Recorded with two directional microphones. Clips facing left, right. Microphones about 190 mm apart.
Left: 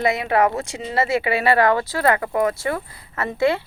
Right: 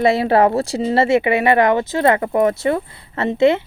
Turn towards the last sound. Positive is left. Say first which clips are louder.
# right 5 dB
turn(degrees=-25)  # may be behind; listen again after turning